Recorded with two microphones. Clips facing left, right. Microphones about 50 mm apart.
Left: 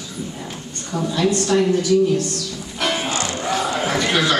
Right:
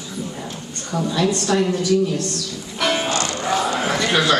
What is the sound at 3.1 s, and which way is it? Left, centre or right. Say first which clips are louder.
Music: right 1 dB; left.